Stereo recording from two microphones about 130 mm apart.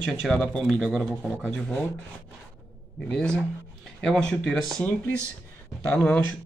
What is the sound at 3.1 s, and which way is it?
Speech, 5° left (ahead or behind).